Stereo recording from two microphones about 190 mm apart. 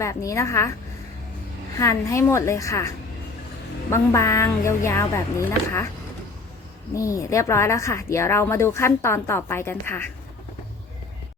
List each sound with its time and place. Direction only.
0.0 s a woman's voice: 15° left (ahead or behind)
1.8 s a woman's voice: 15° left (ahead or behind)
6.9 s a woman's voice: 15° left (ahead or behind)